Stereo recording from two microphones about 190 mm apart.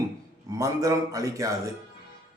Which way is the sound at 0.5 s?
15° right (ahead or behind).